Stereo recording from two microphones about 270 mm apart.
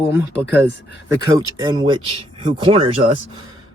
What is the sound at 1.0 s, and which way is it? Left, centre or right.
Speech, centre.